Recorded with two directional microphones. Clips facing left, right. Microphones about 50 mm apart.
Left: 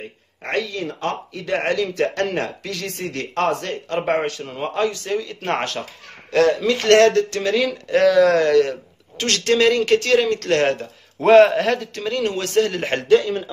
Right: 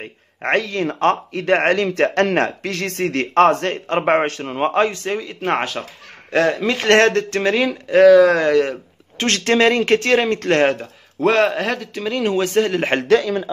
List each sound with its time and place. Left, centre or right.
0.4 s speech: right
5.4 s a man's voice: centre
6.3 s speech: right
7.9 s a man's voice: centre
9.2 s speech: right
10.7 s speech: centre
11.2 s a man's voice: centre; by 12.7 s right